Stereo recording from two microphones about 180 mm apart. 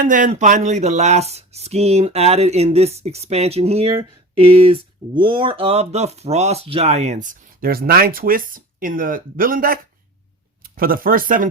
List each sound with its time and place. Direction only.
0.0 s speech: 45° right (ahead or behind)